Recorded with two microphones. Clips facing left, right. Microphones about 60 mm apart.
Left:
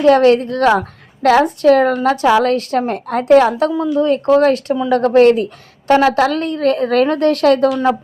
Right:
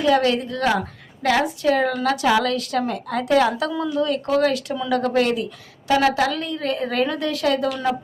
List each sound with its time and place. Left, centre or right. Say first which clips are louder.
0.0 s a woman's voice: left 8 dB; left
2.0 s a woman's voice: left 6 dB; left